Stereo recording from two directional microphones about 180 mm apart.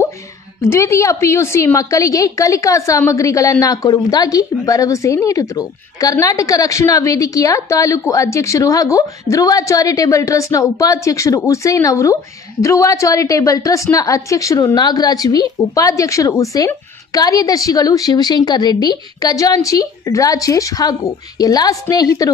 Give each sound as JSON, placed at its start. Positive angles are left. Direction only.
{"t": 0.6, "sound": "a woman's voice", "side_deg": 15}